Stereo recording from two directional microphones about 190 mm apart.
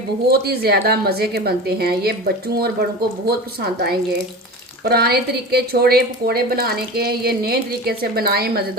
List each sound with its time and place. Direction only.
0.3 s a woman's voice: 55° right (ahead or behind)